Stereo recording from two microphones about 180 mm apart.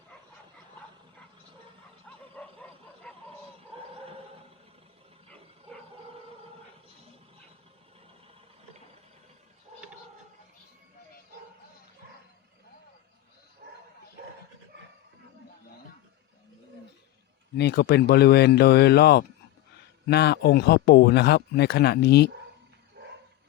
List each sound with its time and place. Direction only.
2.0 s bow-wow: 5° left (ahead or behind)
17.6 s speech: 65° left (ahead or behind)